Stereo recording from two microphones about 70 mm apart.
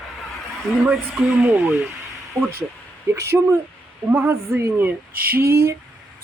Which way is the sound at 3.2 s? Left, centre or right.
Right.